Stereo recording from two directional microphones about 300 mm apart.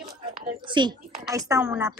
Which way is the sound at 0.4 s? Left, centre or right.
Centre.